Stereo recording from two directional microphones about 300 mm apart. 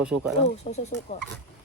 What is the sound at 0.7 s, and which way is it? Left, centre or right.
Speech, left.